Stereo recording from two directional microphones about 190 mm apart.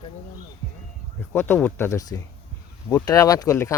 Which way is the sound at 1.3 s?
10° left (ahead or behind).